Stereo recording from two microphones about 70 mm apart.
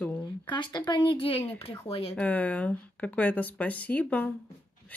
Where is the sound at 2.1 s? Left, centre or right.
Left.